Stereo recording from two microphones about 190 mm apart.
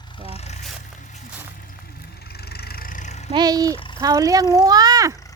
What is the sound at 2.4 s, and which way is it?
Vehicle, 55° left (ahead or behind).